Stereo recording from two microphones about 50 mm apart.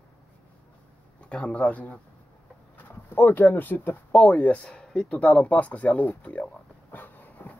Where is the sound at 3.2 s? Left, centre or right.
Left.